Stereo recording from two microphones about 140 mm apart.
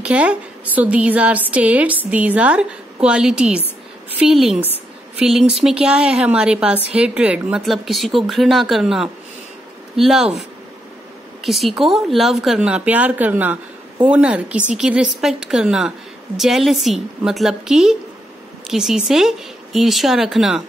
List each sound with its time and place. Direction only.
0.0 s a woman's voice: 10° right (ahead or behind)
11.4 s a woman's voice: centre (ahead or behind)